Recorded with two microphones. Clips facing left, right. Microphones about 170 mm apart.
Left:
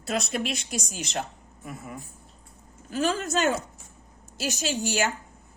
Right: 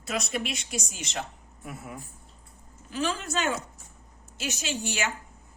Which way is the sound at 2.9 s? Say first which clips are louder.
Left 4 dB; 45° left (ahead or behind).